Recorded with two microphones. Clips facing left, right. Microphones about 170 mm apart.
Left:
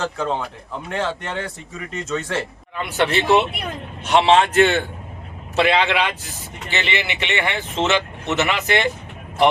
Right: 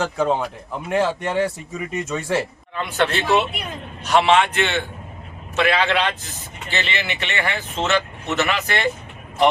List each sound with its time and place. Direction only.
0.0 s speech: 10° right (ahead or behind)
2.7 s speech: 15° left (ahead or behind)
4.5 s a man's voice: 45° left (ahead or behind)
5.5 s speech: 25° left (ahead or behind)